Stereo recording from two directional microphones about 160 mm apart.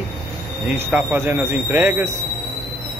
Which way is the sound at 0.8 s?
10° right (ahead or behind).